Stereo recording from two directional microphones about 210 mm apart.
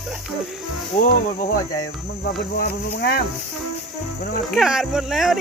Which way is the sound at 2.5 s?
45° left (ahead or behind).